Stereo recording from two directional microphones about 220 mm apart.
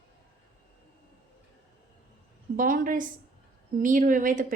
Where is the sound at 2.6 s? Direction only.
40° right (ahead or behind).